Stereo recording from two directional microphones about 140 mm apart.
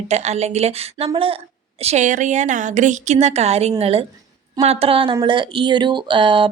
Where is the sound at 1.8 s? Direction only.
55° right (ahead or behind).